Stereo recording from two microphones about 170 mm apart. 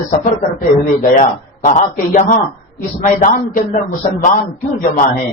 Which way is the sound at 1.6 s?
45° left (ahead or behind).